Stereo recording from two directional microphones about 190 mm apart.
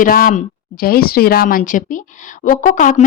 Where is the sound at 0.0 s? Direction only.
45° left (ahead or behind).